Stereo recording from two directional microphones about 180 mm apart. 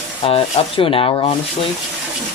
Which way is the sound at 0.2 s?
30° left (ahead or behind).